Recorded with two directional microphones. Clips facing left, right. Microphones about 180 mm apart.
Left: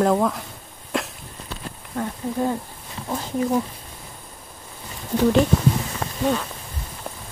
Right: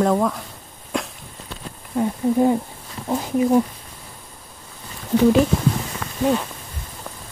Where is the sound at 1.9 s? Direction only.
15° right (ahead or behind).